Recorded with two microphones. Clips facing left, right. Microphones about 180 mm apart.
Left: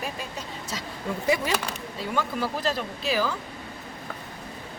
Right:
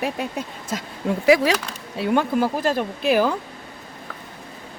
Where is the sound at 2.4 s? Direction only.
50° right (ahead or behind).